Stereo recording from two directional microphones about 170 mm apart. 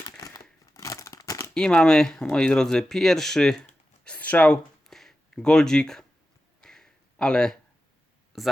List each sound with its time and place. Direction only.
0.2 s crumpling: 20° left (ahead or behind)
1.5 s speech: 5° left (ahead or behind)
4.0 s a sound: 10° left (ahead or behind)
8.3 s speech: centre (ahead or behind)